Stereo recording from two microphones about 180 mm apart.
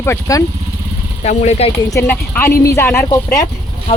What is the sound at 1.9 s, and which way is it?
A woman's voice, 15° left (ahead or behind).